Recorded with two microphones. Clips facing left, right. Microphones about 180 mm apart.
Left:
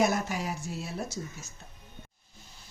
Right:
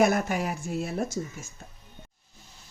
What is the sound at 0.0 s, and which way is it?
Speech, 55° right (ahead or behind).